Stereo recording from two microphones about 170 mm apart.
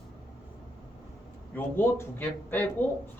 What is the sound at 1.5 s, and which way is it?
A man's voice, 10° left (ahead or behind).